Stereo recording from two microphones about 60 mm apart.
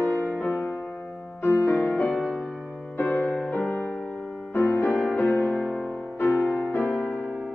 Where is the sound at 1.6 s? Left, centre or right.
Left.